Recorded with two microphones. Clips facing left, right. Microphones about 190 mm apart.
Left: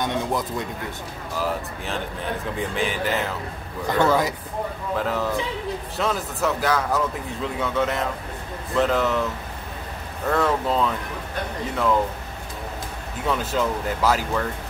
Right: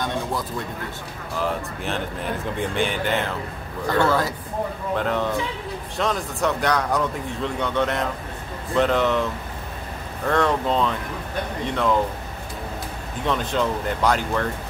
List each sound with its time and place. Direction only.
0.0 s speech: 20° left (ahead or behind)
1.4 s a man's voice: centre (ahead or behind)
4.0 s speech: 20° left (ahead or behind)
4.9 s a man's voice: centre (ahead or behind)
13.3 s a man's voice: 5° left (ahead or behind)